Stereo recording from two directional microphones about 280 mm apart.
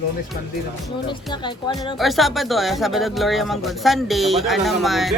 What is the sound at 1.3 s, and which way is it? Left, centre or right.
Speech, centre.